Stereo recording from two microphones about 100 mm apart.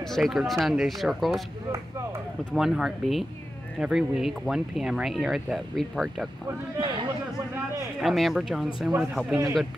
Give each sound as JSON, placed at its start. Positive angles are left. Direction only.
{"t": 0.0, "sound": "speech", "side_deg": 0}
{"t": 2.5, "sound": "speech", "side_deg": -5}
{"t": 6.8, "sound": "speech", "side_deg": -55}
{"t": 8.0, "sound": "speech", "side_deg": -5}